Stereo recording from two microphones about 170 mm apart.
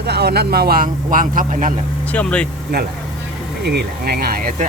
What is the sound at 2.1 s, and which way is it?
Speech, 5° left (ahead or behind).